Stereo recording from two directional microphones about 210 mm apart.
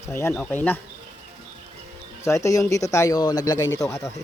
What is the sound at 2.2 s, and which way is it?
Speech, 15° left (ahead or behind).